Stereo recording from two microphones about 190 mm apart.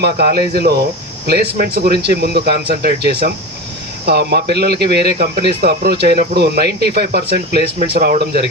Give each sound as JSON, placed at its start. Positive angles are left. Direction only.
{"t": 0.0, "sound": "a man's voice", "side_deg": -55}